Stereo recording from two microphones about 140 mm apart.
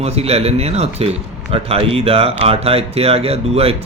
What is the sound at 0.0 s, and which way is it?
Speech, 45° right (ahead or behind).